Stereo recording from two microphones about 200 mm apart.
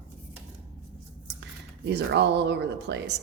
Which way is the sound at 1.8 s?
60° right (ahead or behind).